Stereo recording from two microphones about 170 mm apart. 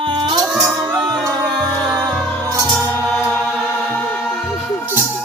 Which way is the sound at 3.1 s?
Centre (ahead or behind).